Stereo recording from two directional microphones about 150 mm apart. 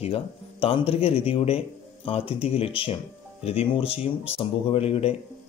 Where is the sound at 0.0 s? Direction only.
40° left (ahead or behind).